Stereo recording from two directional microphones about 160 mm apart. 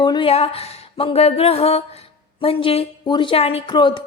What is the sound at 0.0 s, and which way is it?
Speech, 30° left (ahead or behind).